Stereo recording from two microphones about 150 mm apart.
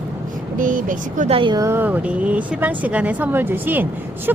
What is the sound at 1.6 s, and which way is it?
Speech, 15° right (ahead or behind).